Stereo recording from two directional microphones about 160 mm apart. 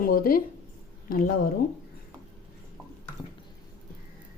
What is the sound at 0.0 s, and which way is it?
A woman's voice, 65° left (ahead or behind).